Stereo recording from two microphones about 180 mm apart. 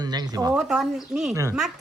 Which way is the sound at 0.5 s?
5° right (ahead or behind).